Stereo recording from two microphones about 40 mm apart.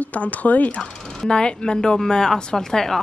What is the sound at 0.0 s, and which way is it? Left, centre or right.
Speech, left.